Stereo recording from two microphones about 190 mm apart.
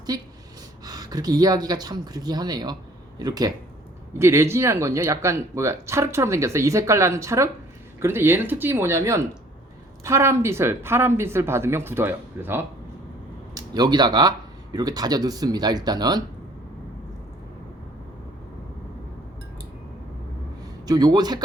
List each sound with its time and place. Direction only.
0.9 s speech: 20° right (ahead or behind)
20.8 s speech: 20° right (ahead or behind)